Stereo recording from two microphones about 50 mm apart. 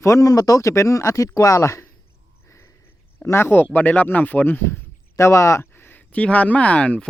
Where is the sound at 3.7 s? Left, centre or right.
Left.